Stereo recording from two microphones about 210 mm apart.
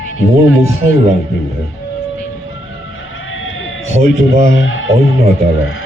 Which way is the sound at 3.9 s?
30° right (ahead or behind).